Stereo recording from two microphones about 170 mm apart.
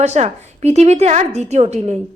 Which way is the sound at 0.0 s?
40° right (ahead or behind).